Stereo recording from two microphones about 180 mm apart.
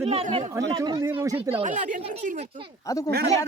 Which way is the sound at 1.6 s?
45° right (ahead or behind).